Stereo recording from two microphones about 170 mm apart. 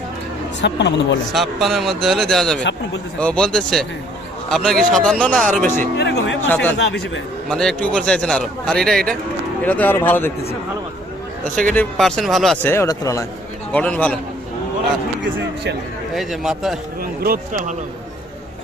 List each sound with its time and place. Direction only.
0.6 s a man's voice: 90° left
1.3 s a man's voice: centre (ahead or behind)
6.0 s music: 85° left
6.5 s speech: 10° left (ahead or behind)
6.7 s a man's voice: 90° left
7.5 s a man's voice: 5° left (ahead or behind)
11.5 s a man's voice: 10° left (ahead or behind)
12.6 s speech: 15° left (ahead or behind)
13.7 s speech: 5° left (ahead or behind)
16.1 s a man's voice: centre (ahead or behind)
17.2 s speech: 55° right (ahead or behind)